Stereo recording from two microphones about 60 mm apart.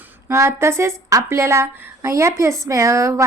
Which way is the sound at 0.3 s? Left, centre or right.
Right.